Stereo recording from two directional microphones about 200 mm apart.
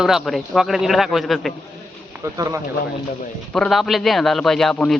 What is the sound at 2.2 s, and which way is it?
Speech, 15° right (ahead or behind).